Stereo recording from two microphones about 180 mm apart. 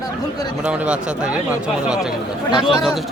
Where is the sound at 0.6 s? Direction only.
5° right (ahead or behind).